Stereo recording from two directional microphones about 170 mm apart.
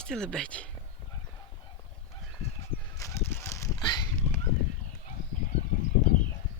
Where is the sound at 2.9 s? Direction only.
15° left (ahead or behind).